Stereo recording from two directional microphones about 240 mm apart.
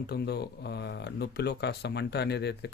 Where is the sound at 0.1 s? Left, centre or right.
Left.